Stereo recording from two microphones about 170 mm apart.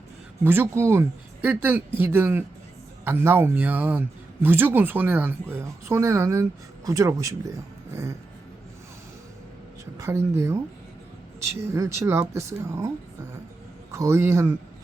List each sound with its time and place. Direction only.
0.4 s speech: 10° right (ahead or behind)
10.0 s speech: 15° right (ahead or behind)
13.9 s speech: 15° right (ahead or behind)